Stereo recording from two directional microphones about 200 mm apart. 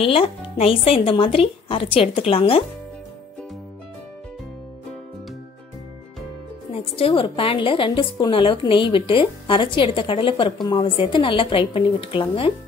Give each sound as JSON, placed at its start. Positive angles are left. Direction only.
{"t": 0.1, "sound": "a woman's voice", "side_deg": 30}
{"t": 6.7, "sound": "a woman's voice", "side_deg": 30}